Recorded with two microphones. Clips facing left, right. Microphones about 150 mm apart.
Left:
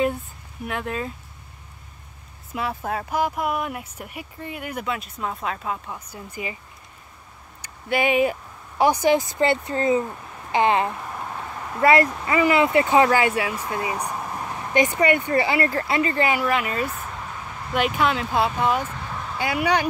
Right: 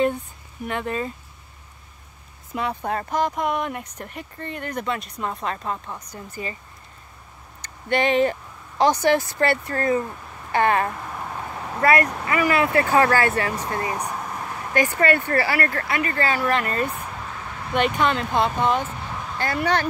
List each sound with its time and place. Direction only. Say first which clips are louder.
0.7 s speech: right 2 dB; centre (ahead or behind)
2.5 s speech: right 1 dB; 5° left (ahead or behind)
7.6 s speech: right 1 dB; 10° left (ahead or behind)